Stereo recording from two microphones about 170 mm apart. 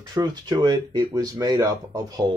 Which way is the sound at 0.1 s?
25° right (ahead or behind).